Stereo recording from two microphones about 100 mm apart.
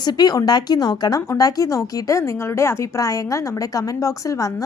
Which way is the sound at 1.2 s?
30° left (ahead or behind).